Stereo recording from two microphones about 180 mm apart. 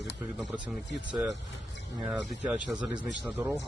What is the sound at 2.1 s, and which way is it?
Speech, 5° right (ahead or behind).